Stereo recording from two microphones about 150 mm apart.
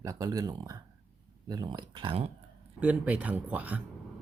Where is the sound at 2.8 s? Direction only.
10° right (ahead or behind).